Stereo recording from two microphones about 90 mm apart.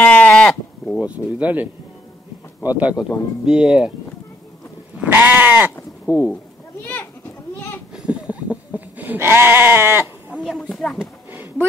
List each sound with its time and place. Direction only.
0.0 s sheep: 20° left (ahead or behind)
0.9 s speech: 15° right (ahead or behind)
5.0 s goat: 20° right (ahead or behind)
6.1 s speech: 15° right (ahead or behind)
6.9 s goat: 20° left (ahead or behind)
7.9 s goat: 15° right (ahead or behind)
10.4 s speech: 5° left (ahead or behind)
11.3 s a sound: 20° right (ahead or behind)